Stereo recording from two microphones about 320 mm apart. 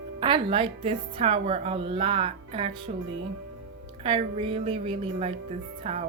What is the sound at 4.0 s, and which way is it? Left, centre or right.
Speech, centre.